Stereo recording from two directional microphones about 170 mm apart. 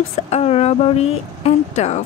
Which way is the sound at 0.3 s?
35° left (ahead or behind).